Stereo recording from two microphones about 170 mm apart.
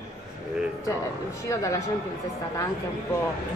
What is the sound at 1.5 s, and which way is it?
Speech, 20° left (ahead or behind).